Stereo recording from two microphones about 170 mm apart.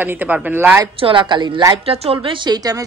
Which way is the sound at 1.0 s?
30° right (ahead or behind).